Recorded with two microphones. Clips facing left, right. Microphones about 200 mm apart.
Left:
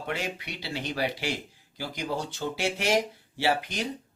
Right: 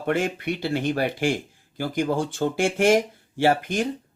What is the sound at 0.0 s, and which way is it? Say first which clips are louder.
Speech: right 9 dB; 50° right (ahead or behind).